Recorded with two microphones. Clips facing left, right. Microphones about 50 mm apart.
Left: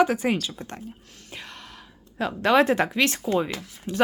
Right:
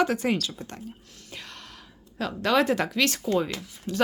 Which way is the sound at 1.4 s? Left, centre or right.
Centre.